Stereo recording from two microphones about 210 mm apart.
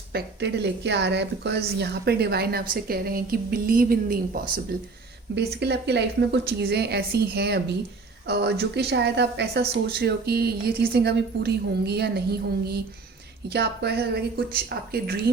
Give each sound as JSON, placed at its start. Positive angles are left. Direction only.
{"t": 0.1, "sound": "a woman's voice", "side_deg": -55}
{"t": 5.3, "sound": "a woman's voice", "side_deg": -55}